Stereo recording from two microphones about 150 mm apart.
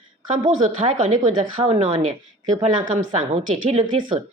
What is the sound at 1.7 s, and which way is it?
Speech, 50° right (ahead or behind).